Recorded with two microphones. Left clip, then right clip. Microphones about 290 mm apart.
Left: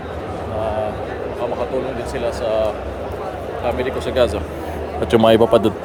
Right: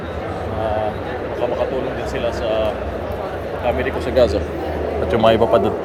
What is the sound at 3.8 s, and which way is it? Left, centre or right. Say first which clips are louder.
Speech: right 2 dB; centre.